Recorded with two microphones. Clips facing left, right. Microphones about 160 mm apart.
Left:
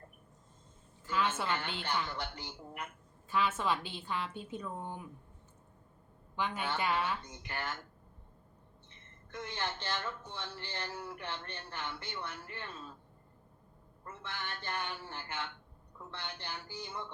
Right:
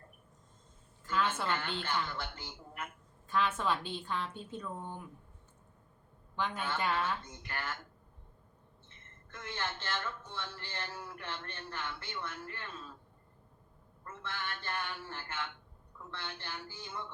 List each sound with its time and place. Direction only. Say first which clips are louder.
1.0 s a sound: even; 10° left (ahead or behind)
1.4 s a woman's voice: right 1 dB; 10° left (ahead or behind)
6.3 s speech: even; 10° left (ahead or behind)
7.4 s speech: left 2 dB; 15° left (ahead or behind)
9.3 s speech: left 1 dB; 15° left (ahead or behind)
14.0 s speech: right 1 dB; 15° left (ahead or behind)